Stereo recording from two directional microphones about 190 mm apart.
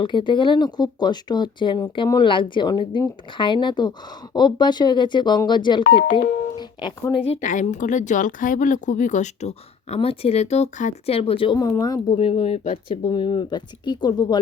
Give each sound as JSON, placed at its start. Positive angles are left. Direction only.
{"t": 0.0, "sound": "speech", "side_deg": 25}
{"t": 6.6, "sound": "music", "side_deg": 25}
{"t": 7.3, "sound": "speech", "side_deg": 40}
{"t": 12.1, "sound": "speech", "side_deg": 30}